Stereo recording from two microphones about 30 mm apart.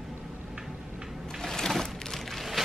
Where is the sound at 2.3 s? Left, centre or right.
Centre.